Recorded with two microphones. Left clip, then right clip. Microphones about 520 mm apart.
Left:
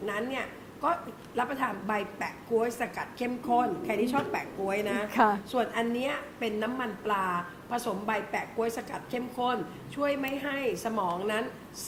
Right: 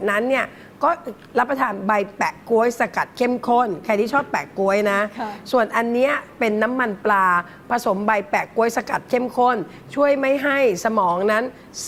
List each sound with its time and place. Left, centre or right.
0.0 s a woman's voice: right